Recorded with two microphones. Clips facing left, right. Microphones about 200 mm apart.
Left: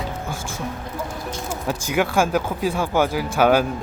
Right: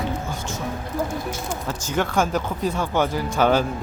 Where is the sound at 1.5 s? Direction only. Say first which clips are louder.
Left 4 dB; 10° left (ahead or behind).